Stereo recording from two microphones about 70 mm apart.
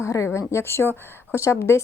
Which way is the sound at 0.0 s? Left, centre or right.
Left.